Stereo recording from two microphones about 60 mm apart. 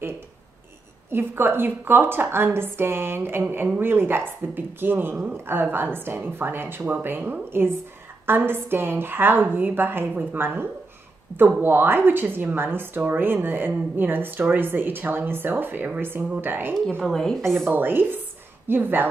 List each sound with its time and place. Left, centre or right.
1.1 s a woman's voice: right
17.0 s speech: centre
17.6 s a woman's voice: right